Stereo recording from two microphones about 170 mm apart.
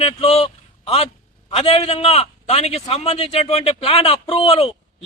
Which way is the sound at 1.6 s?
35° left (ahead or behind).